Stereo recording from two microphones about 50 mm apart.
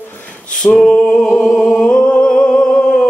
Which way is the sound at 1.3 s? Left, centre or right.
Centre.